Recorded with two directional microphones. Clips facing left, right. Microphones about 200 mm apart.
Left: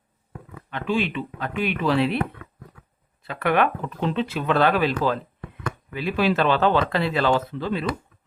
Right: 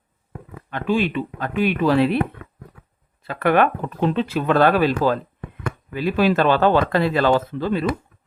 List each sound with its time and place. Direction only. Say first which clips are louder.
0.7 s speech: right 4 dB; 45° right (ahead or behind)
3.2 s speech: right 4 dB; 45° right (ahead or behind)